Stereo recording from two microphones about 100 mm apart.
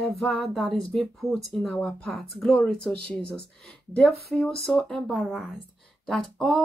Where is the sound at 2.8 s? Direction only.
10° left (ahead or behind).